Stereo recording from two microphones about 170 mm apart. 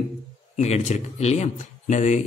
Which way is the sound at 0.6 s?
40° left (ahead or behind).